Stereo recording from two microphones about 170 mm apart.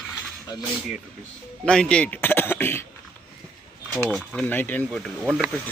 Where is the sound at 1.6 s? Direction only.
5° left (ahead or behind).